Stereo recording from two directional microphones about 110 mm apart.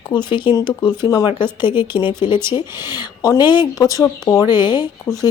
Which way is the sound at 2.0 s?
15° right (ahead or behind).